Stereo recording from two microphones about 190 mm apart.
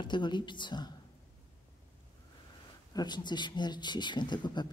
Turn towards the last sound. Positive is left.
turn(degrees=25)  # may be behind; listen again after turning